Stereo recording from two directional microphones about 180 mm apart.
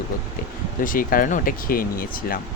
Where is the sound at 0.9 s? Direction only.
50° left (ahead or behind).